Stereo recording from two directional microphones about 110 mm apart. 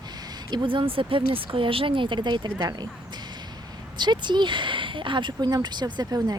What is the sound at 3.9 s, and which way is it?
Speech, 45° right (ahead or behind).